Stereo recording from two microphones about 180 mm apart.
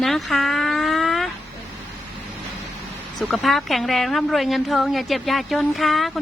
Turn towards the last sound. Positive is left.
turn(degrees=0)  # may be behind; listen again after turning